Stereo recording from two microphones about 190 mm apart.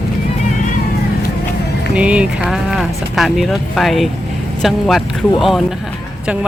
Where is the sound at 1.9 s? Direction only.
5° right (ahead or behind).